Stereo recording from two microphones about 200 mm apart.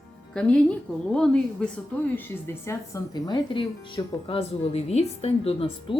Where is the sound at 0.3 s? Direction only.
5° left (ahead or behind).